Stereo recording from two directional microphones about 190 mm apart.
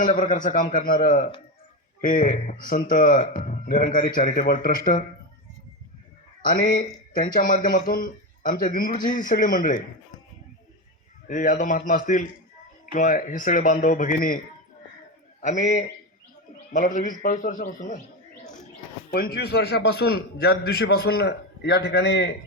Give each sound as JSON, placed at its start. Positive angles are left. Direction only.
{"t": 0.0, "sound": "a man's voice", "side_deg": 45}
{"t": 6.4, "sound": "a man's voice", "side_deg": 45}
{"t": 11.3, "sound": "a man's voice", "side_deg": 45}
{"t": 19.1, "sound": "a man's voice", "side_deg": 55}